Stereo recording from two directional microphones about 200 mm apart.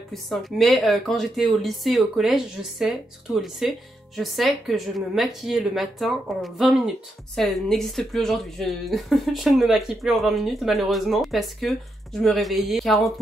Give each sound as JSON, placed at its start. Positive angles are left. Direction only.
{"t": 0.1, "sound": "speech", "side_deg": 0}